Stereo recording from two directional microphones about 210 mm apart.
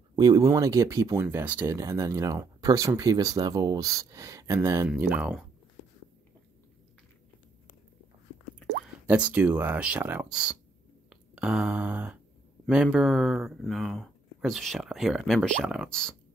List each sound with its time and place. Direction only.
0.1 s speech: 15° right (ahead or behind)
9.0 s speech: 5° right (ahead or behind)
11.1 s a sound: 5° right (ahead or behind)
12.6 s speech: centre (ahead or behind)